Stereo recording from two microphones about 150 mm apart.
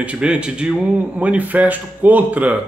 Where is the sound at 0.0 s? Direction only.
5° right (ahead or behind).